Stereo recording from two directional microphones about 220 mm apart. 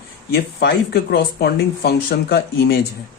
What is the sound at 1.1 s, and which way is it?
A man's voice, 45° left (ahead or behind).